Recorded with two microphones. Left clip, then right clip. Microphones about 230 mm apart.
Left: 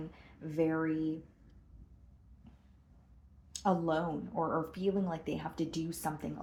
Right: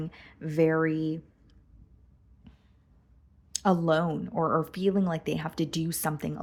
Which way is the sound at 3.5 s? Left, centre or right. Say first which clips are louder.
Right 7 dB; right.